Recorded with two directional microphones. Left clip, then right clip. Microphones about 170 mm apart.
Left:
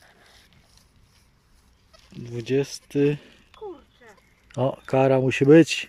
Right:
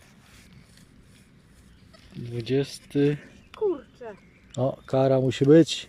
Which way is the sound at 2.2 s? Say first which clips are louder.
Left 2 dB; 10° left (ahead or behind).